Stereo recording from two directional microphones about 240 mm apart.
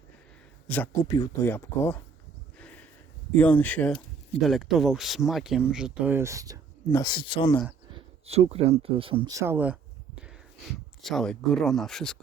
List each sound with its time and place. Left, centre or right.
0.7 s speech: centre
2.6 s a sound: centre
3.3 s speech: centre
6.9 s speech: centre
7.9 s speech: right; by 12.1 s centre